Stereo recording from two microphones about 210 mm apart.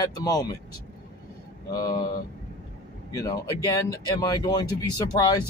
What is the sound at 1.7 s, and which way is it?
Speech, 15° left (ahead or behind).